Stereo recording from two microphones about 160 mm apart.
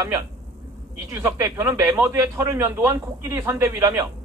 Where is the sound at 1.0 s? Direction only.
20° right (ahead or behind).